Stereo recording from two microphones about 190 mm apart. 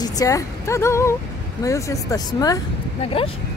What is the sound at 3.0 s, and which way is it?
Speech, 30° left (ahead or behind).